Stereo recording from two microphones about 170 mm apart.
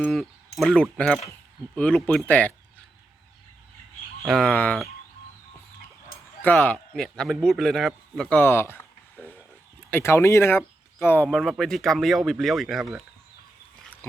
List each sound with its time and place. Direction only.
0.0 s speech: centre (ahead or behind)
4.2 s speech: centre (ahead or behind)
6.4 s a man's voice: 10° left (ahead or behind)
11.3 s speech: centre (ahead or behind)